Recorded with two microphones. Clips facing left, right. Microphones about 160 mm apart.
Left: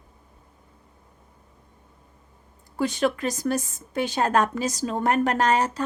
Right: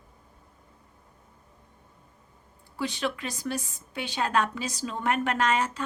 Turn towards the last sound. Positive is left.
turn(degrees=40)  # may be behind; listen again after turning